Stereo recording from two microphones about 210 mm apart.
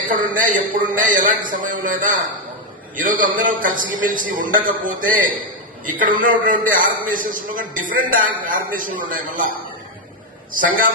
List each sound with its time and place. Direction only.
0.0 s a man's voice: 40° right (ahead or behind)